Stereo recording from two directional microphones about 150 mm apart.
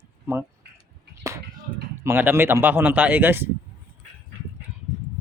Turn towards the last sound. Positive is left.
turn(degrees=-15)  # may be behind; listen again after turning